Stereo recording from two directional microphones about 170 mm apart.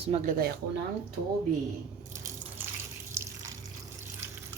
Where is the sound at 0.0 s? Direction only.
45° right (ahead or behind).